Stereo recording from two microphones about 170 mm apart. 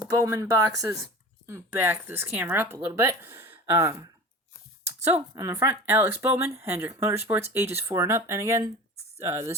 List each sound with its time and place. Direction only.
0.3 s speech: 20° right (ahead or behind)
5.3 s speech: 20° right (ahead or behind)